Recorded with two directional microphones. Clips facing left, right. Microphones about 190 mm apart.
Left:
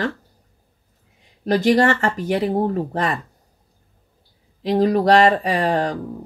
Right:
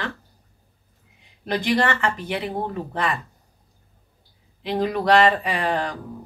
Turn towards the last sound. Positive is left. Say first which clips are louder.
# left 5 dB
turn(degrees=40)  # may be behind; listen again after turning